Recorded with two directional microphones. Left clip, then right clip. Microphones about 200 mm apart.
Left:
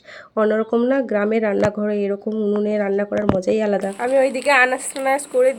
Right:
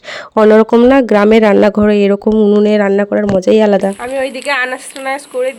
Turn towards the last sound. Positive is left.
turn(degrees=5)  # may be behind; listen again after turning